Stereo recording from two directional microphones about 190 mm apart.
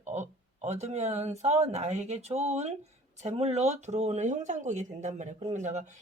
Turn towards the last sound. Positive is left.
turn(degrees=-40)  # may be behind; listen again after turning